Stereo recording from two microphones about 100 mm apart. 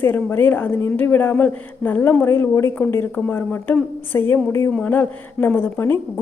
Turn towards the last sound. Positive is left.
turn(degrees=20)  # may be behind; listen again after turning